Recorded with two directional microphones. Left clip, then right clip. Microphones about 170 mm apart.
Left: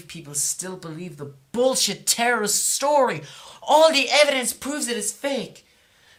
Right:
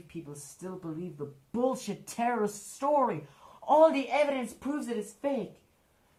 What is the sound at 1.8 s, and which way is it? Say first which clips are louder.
Speech: left 10 dB; 20° left (ahead or behind).